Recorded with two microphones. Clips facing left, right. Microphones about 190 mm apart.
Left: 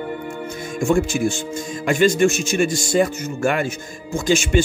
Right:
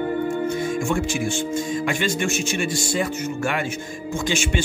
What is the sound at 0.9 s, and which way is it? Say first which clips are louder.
Speech: left 4 dB; 40° left (ahead or behind).